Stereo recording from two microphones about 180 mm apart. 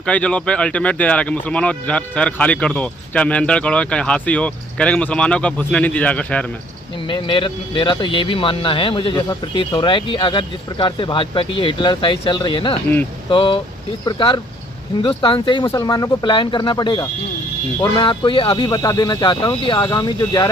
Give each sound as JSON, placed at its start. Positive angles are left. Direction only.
{"t": 0.0, "sound": "speech", "side_deg": 5}
{"t": 7.1, "sound": "speech", "side_deg": 25}